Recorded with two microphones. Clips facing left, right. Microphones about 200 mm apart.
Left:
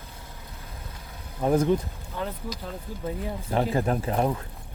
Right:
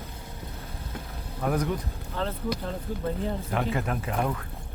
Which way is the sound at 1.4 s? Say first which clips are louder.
Left 5 dB; 30° left (ahead or behind).